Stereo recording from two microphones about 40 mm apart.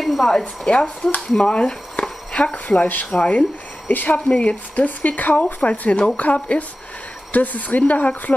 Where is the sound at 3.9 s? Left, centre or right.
Left.